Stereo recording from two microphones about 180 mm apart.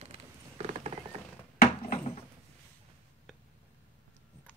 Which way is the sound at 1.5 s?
55° left (ahead or behind).